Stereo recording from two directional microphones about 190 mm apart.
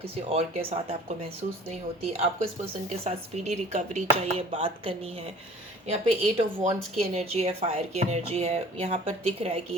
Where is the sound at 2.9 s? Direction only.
35° right (ahead or behind).